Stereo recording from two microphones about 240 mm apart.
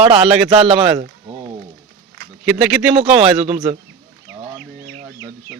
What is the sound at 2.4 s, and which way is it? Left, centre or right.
A man's voice, centre.